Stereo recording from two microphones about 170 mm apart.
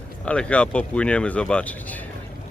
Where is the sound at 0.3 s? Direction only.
5° left (ahead or behind).